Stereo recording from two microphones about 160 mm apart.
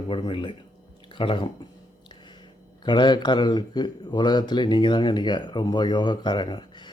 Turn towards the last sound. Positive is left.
turn(degrees=30)  # may be behind; listen again after turning